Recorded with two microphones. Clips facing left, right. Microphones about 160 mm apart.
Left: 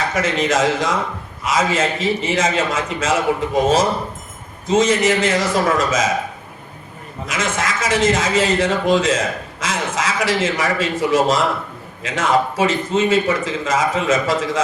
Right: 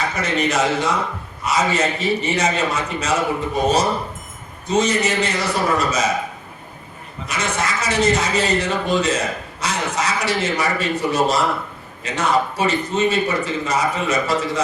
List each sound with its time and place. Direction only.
0.1 s speech: 90° left
7.3 s speech: 90° left